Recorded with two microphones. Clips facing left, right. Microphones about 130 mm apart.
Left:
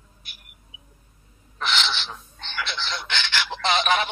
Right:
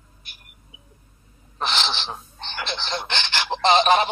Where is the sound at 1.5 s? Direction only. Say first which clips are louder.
Right 1 dB; 35° right (ahead or behind).